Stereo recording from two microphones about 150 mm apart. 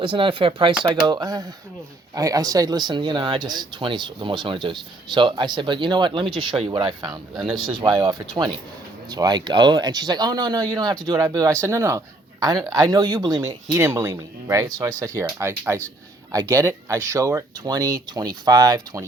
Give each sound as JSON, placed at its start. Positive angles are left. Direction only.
{"t": 0.0, "sound": "a man's voice", "side_deg": -35}